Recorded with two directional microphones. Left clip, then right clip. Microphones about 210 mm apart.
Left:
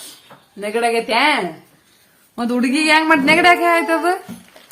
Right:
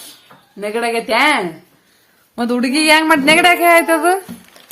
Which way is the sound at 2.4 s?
20° right (ahead or behind).